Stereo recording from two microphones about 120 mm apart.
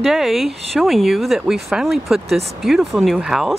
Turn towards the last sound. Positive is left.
turn(degrees=-5)  # may be behind; listen again after turning